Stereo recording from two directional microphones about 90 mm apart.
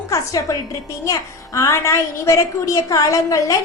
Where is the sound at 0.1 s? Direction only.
35° left (ahead or behind).